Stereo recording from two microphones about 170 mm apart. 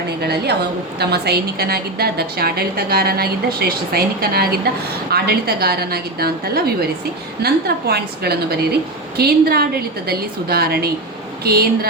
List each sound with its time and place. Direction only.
0.2 s a woman's voice: 70° right (ahead or behind)